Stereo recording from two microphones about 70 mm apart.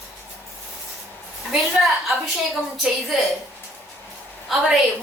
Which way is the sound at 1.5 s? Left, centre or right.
Centre.